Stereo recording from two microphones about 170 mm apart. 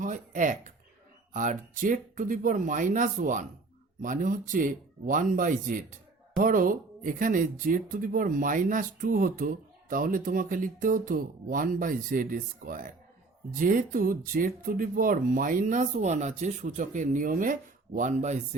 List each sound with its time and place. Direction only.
0.0 s speech: 50° right (ahead or behind)